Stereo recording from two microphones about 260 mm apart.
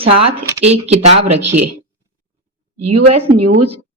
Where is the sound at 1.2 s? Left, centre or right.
Right.